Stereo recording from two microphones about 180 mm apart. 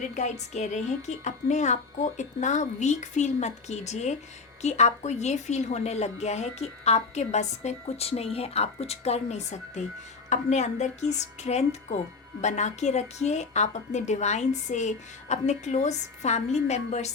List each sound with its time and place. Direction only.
0.1 s a woman's voice: 40° left (ahead or behind)